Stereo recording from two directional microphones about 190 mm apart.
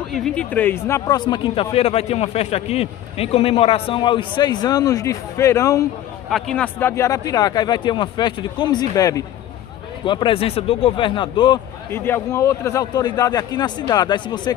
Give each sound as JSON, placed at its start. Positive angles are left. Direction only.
{"t": 0.1, "sound": "speech", "side_deg": 5}
{"t": 6.3, "sound": "speech", "side_deg": 5}
{"t": 11.9, "sound": "speech", "side_deg": 10}